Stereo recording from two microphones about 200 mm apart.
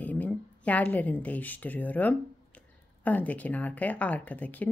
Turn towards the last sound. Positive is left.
turn(degrees=10)  # may be behind; listen again after turning